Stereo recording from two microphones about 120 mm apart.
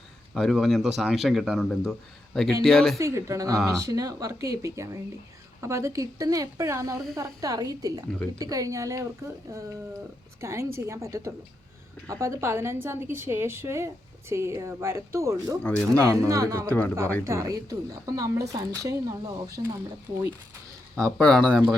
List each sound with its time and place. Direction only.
0.3 s speech: centre (ahead or behind)
3.0 s a woman's voice: 25° right (ahead or behind)
15.6 s speech: 10° left (ahead or behind)
16.0 s a woman's voice: 25° right (ahead or behind)
16.6 s speech: 15° left (ahead or behind)
17.2 s a woman's voice: 25° right (ahead or behind)
21.0 s speech: 5° left (ahead or behind)